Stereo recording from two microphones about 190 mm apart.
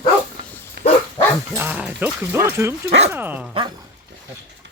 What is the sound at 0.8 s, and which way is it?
Dog, 55° right (ahead or behind).